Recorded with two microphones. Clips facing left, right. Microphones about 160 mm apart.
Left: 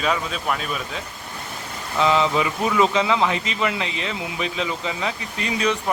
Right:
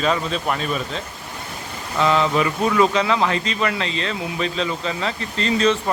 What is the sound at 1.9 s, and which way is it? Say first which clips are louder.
A man's voice: right 1 dB; 15° left (ahead or behind).